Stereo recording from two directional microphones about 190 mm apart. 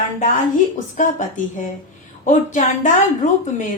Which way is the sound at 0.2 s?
40° left (ahead or behind).